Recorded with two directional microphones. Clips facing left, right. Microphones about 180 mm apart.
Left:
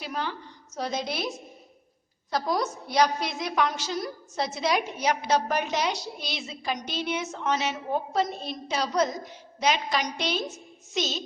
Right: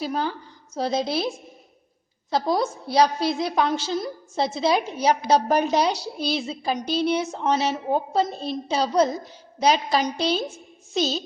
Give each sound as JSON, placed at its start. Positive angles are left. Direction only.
{"t": 0.0, "sound": "a woman's voice", "side_deg": -35}